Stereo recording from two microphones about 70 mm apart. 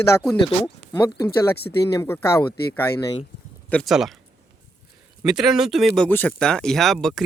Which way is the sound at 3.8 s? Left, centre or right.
Centre.